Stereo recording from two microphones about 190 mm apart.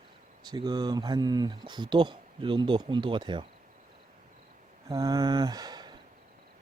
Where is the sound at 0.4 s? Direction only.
20° right (ahead or behind).